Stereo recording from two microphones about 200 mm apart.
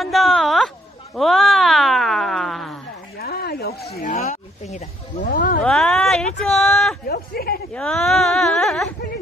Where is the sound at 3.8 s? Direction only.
30° left (ahead or behind).